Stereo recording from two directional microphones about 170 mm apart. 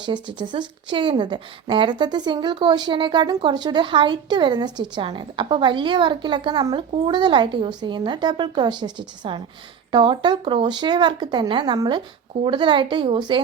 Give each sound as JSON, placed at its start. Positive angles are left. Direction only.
{"t": 0.0, "sound": "a woman's voice", "side_deg": -25}